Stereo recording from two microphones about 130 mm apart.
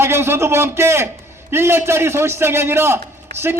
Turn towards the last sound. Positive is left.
turn(degrees=-20)  # may be behind; listen again after turning